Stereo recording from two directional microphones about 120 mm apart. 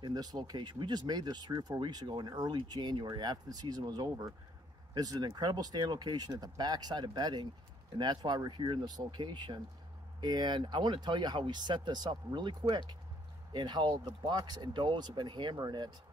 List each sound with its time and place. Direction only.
0.0 s speech: 35° right (ahead or behind)